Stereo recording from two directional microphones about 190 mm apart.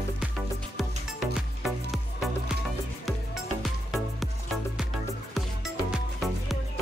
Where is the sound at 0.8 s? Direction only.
Centre (ahead or behind).